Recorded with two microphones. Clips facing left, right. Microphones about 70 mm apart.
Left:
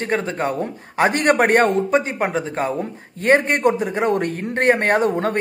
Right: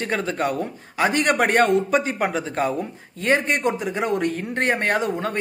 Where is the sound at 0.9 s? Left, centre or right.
Left.